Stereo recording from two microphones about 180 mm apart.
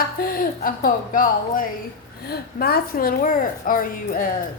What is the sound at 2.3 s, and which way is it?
A woman's voice, 60° left (ahead or behind).